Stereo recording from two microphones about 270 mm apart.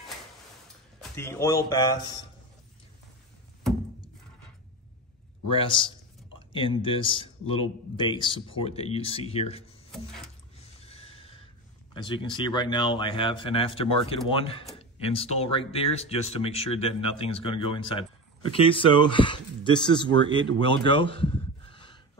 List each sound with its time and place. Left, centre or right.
1.1 s speech: centre
5.5 s speech: centre
10.6 s neigh: left
11.9 s speech: centre
21.6 s a sound: centre